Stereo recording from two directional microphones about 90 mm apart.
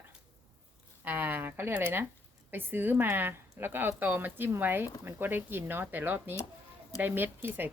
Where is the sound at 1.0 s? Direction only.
20° right (ahead or behind).